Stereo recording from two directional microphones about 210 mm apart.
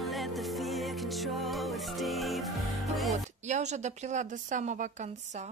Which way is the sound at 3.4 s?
35° right (ahead or behind).